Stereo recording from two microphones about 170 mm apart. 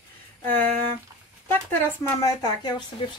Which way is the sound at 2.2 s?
20° left (ahead or behind).